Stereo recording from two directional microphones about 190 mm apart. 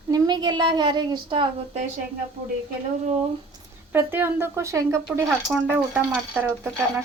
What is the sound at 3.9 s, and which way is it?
A woman's voice, 10° right (ahead or behind).